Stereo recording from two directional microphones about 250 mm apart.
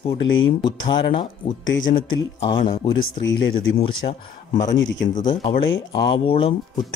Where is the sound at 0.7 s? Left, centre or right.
Centre.